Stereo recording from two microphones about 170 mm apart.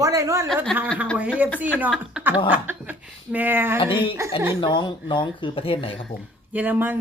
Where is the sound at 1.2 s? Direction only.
10° right (ahead or behind).